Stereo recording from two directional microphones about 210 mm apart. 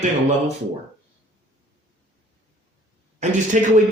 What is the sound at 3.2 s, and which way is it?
Speech, 35° right (ahead or behind).